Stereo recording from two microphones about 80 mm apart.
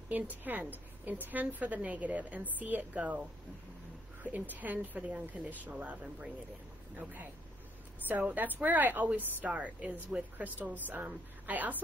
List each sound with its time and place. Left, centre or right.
0.4 s a woman's voice: right
4.2 s a woman's voice: right
8.1 s a woman's voice: centre